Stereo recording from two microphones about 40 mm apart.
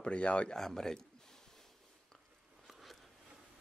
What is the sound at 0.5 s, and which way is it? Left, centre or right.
Speech, centre.